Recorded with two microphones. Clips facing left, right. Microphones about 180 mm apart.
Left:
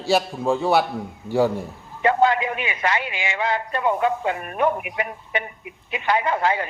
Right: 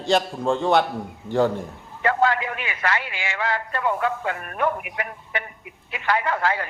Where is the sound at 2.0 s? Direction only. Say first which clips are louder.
Left 3 dB; 20° left (ahead or behind).